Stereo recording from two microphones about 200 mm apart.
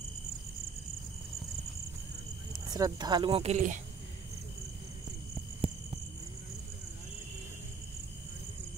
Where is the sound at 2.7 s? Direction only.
20° right (ahead or behind); by 3.8 s 35° right (ahead or behind).